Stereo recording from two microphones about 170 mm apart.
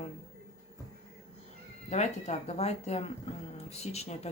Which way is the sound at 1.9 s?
40° left (ahead or behind).